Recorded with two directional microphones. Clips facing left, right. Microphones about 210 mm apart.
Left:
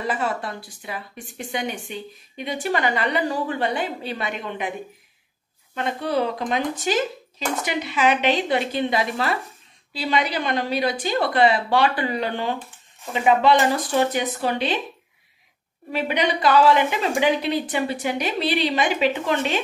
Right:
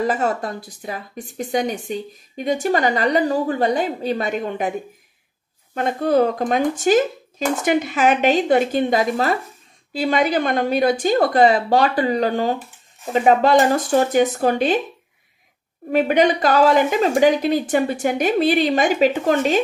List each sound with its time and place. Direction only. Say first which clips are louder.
0.0 s a woman's voice: right 5 dB; 40° right (ahead or behind)
5.8 s a woman's voice: right 6 dB; 45° right (ahead or behind)
15.9 s a woman's voice: right 7 dB; 50° right (ahead or behind)